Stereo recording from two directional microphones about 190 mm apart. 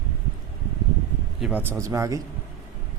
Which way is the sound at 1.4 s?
5° right (ahead or behind).